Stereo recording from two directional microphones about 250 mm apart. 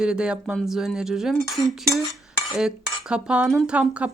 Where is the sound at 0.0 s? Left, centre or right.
Centre.